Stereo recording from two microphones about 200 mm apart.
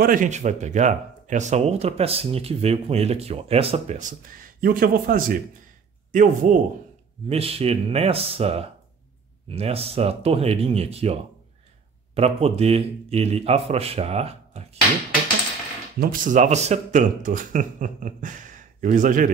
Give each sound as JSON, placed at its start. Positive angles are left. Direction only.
{"t": 0.0, "sound": "speech", "side_deg": -40}
{"t": 7.2, "sound": "speech", "side_deg": -30}
{"t": 12.2, "sound": "speech", "side_deg": -30}
{"t": 16.0, "sound": "speech", "side_deg": -40}